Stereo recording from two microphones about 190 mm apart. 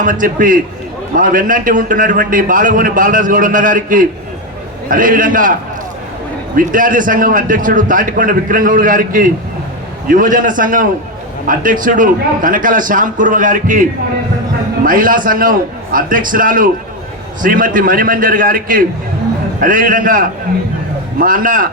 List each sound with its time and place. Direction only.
0.0 s a man's voice: 45° right (ahead or behind)
6.6 s a man's voice: 45° right (ahead or behind)
14.8 s a man's voice: 45° right (ahead or behind)